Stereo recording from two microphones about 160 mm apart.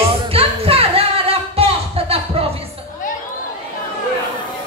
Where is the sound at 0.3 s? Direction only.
35° right (ahead or behind).